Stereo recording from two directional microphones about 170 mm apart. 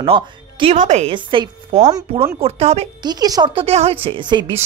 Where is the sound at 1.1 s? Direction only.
30° right (ahead or behind).